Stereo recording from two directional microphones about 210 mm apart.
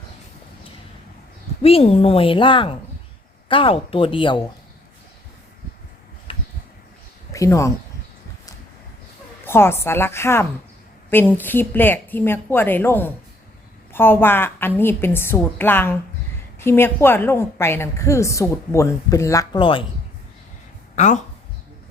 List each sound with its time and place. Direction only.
1.6 s a woman's voice: 30° left (ahead or behind)
7.3 s a woman's voice: 15° left (ahead or behind)
9.5 s a woman's voice: 10° left (ahead or behind)
20.9 s speech: 35° left (ahead or behind)